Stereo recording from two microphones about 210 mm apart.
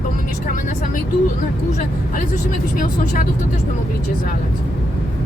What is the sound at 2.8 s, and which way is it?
Speech, 40° left (ahead or behind).